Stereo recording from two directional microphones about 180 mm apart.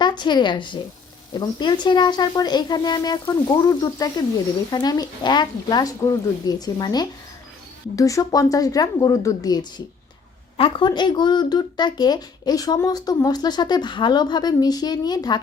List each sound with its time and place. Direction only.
0.0 s a woman's voice: 25° left (ahead or behind)